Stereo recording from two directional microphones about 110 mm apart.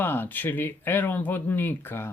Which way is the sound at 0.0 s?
20° left (ahead or behind).